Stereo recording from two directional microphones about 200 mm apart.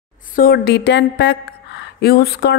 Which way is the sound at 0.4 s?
50° left (ahead or behind).